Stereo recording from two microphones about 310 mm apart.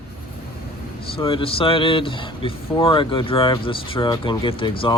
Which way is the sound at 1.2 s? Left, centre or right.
Centre.